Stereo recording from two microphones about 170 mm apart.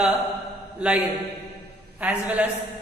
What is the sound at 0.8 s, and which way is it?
Music, 5° right (ahead or behind).